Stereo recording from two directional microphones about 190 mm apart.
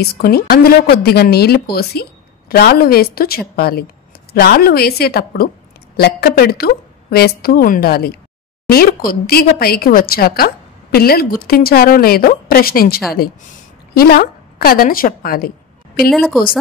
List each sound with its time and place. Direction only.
0.0 s a woman's voice: 55° left (ahead or behind)
16.1 s speech: centre (ahead or behind)